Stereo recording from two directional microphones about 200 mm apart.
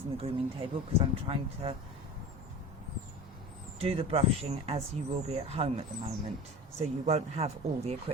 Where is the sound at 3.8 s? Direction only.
30° right (ahead or behind).